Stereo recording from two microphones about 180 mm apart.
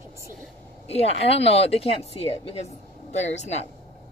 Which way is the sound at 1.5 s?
35° left (ahead or behind).